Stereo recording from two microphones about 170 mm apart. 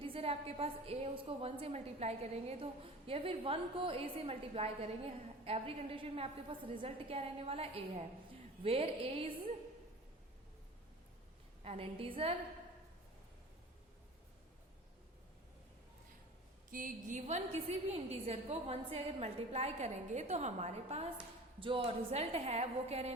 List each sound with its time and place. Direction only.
0.0 s a woman's voice: 35° right (ahead or behind)
11.6 s a woman's voice: 35° right (ahead or behind)
16.7 s a woman's voice: 50° right (ahead or behind)